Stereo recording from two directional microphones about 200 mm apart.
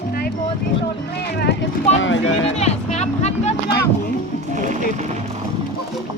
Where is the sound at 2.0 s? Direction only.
70° left (ahead or behind).